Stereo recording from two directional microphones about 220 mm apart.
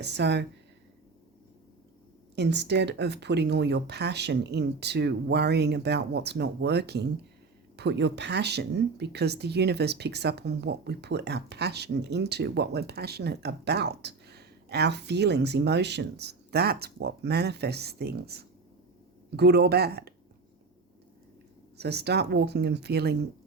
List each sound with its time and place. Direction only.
0.0 s speech: 50° right (ahead or behind)
2.3 s speech: 50° right (ahead or behind)
21.8 s speech: 50° right (ahead or behind)